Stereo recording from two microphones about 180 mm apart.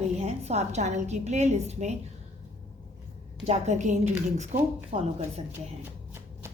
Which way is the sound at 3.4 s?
40° right (ahead or behind).